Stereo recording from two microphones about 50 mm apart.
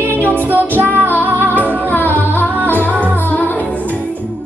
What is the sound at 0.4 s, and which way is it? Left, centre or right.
Music, right.